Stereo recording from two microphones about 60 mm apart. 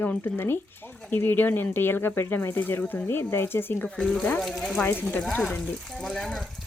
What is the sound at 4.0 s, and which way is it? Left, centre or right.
Speech, centre.